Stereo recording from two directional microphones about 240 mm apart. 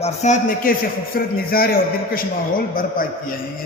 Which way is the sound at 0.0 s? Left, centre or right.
Left.